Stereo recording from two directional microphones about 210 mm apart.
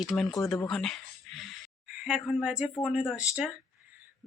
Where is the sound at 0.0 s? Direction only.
Centre (ahead or behind).